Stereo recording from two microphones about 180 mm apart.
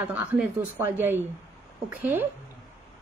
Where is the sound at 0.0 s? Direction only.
10° right (ahead or behind).